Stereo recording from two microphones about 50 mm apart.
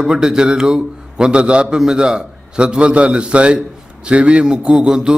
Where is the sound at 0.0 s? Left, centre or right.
Centre.